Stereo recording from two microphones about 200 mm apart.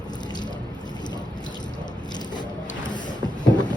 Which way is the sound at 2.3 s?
20° left (ahead or behind).